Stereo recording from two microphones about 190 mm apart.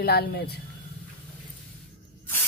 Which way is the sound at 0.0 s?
55° left (ahead or behind).